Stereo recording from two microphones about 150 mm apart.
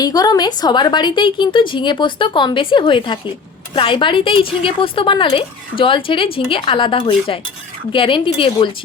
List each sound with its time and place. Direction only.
0.0 s a woman's voice: 25° left (ahead or behind)